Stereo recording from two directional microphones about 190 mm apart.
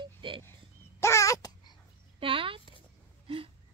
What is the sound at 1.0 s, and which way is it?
Dog, 15° left (ahead or behind).